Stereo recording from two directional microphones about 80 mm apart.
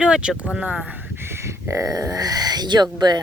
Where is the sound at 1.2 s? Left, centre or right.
Right.